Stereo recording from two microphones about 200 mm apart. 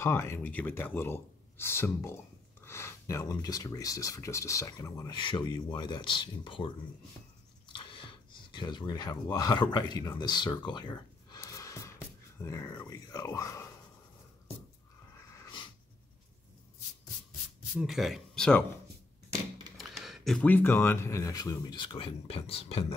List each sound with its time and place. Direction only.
0.0 s speech: 15° left (ahead or behind)
15.3 s dog: 25° left (ahead or behind)
17.7 s speech: centre (ahead or behind)
19.8 s speech: centre (ahead or behind); by 22.9 s 30° left (ahead or behind)